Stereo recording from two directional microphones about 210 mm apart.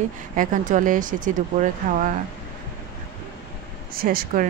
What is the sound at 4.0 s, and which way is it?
Speech, 45° right (ahead or behind).